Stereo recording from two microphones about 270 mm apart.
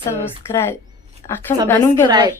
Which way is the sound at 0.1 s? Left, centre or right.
Centre.